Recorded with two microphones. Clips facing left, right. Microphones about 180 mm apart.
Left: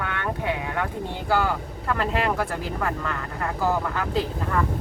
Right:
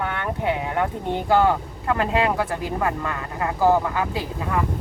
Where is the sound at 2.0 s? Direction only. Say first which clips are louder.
Right 3 dB; 15° right (ahead or behind).